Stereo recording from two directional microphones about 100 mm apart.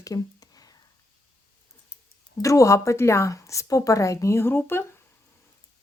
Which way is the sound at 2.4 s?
35° left (ahead or behind).